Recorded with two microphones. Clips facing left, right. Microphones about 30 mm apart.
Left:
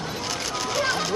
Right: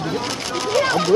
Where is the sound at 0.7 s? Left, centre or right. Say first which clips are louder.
Right 8 dB; right.